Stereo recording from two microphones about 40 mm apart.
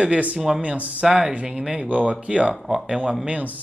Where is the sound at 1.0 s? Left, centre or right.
Centre.